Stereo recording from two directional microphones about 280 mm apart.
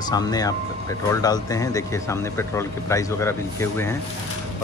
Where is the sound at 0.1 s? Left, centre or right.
Centre.